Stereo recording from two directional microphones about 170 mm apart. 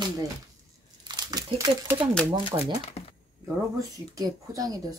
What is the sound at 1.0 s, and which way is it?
Crumpling, 25° right (ahead or behind).